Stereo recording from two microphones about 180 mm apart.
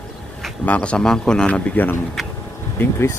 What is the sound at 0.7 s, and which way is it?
A man's voice, 5° left (ahead or behind).